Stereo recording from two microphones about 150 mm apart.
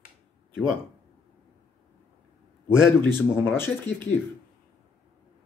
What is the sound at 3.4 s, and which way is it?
Speech, 15° left (ahead or behind).